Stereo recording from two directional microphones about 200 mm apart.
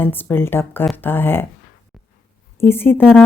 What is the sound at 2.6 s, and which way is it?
Speech, 10° left (ahead or behind).